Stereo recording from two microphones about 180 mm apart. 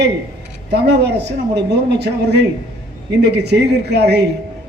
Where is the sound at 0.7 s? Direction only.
70° right (ahead or behind).